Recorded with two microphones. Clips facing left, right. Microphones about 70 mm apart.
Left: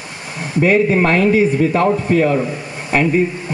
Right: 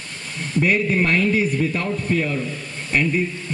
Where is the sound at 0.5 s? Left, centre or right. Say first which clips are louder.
Left 6 dB; centre.